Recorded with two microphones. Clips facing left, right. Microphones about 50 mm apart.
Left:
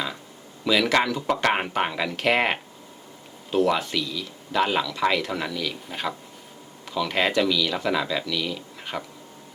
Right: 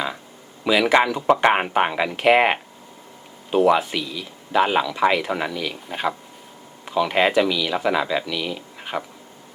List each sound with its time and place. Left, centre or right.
0.6 s speech: centre